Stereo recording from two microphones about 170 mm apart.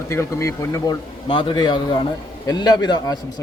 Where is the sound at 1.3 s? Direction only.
30° left (ahead or behind).